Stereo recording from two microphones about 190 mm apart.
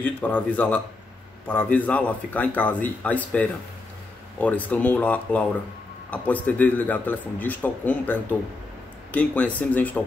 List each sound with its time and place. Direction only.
0.0 s speech: 10° left (ahead or behind)